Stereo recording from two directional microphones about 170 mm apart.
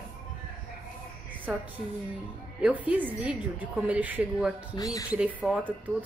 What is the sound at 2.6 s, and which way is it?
A woman's voice, 10° right (ahead or behind).